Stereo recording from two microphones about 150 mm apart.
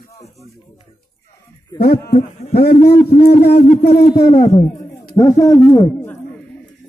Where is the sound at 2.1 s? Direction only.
45° left (ahead or behind).